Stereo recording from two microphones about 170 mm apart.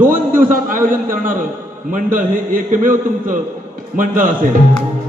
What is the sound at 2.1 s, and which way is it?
A man's voice, 55° right (ahead or behind).